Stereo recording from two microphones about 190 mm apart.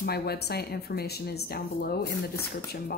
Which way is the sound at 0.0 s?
55° left (ahead or behind).